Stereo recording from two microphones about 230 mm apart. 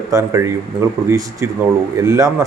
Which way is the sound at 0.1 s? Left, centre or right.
Centre.